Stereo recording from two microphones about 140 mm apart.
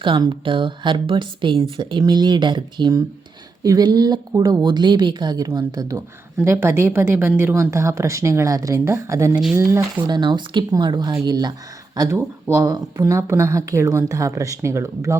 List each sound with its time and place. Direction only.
0.0 s speech: 35° right (ahead or behind)
10.1 s speech: 30° right (ahead or behind)